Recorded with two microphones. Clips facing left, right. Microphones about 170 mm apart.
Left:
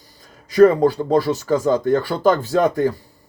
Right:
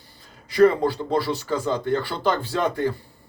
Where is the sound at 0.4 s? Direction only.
45° left (ahead or behind).